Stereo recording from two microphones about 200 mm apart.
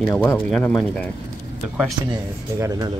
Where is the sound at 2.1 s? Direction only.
15° right (ahead or behind).